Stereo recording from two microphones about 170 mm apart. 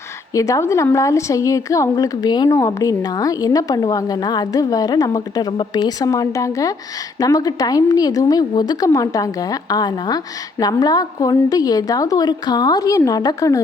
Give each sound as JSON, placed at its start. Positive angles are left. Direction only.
{"t": 0.3, "sound": "a woman's voice", "side_deg": 20}